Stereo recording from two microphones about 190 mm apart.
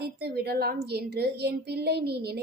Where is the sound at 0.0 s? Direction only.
55° right (ahead or behind).